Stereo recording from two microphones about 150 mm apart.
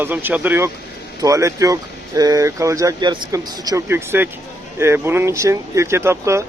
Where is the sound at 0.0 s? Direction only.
15° right (ahead or behind).